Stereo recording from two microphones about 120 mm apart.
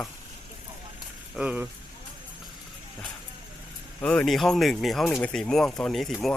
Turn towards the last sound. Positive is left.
turn(degrees=0)  # may be behind; listen again after turning